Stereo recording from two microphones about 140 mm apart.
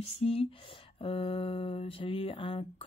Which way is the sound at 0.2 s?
45° left (ahead or behind).